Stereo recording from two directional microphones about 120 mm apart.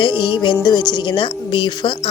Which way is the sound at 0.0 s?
40° left (ahead or behind).